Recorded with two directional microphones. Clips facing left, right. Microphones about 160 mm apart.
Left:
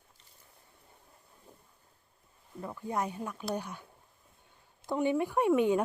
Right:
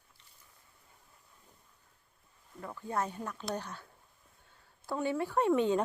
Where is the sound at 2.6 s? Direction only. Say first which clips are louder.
Left 1 dB; 15° left (ahead or behind).